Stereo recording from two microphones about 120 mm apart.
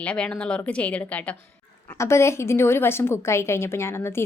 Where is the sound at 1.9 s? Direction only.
20° left (ahead or behind).